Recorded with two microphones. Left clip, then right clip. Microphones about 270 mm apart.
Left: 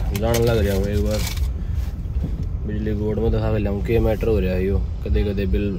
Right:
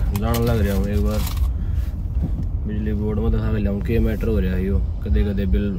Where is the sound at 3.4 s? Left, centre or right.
Left.